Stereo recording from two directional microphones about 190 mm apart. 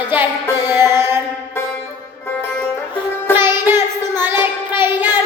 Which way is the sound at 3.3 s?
10° right (ahead or behind).